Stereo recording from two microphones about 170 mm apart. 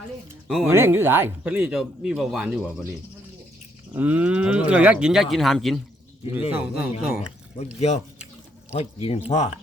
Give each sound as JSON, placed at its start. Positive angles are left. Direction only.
{"t": 0.4, "sound": "speech", "side_deg": -5}
{"t": 0.7, "sound": "speech", "side_deg": -15}
{"t": 3.9, "sound": "speech", "side_deg": -10}
{"t": 7.8, "sound": "speech", "side_deg": 40}